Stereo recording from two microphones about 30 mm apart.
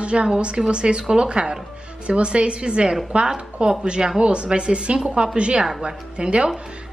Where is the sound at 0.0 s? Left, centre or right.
Right.